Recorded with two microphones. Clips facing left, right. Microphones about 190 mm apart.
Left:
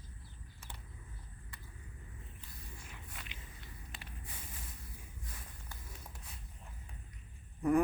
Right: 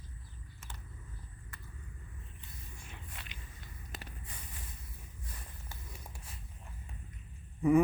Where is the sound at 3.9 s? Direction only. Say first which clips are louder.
Right 7 dB; 40° right (ahead or behind).